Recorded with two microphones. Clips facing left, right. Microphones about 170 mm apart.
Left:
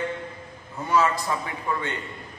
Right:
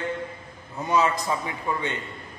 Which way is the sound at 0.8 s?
20° right (ahead or behind).